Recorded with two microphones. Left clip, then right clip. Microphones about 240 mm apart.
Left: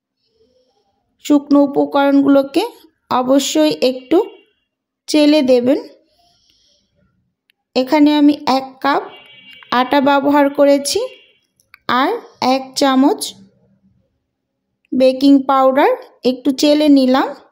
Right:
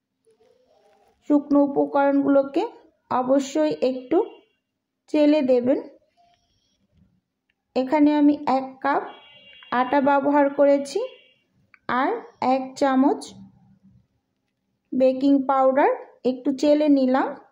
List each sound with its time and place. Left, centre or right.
1.2 s speech: left
7.4 s speech: left
15.0 s speech: left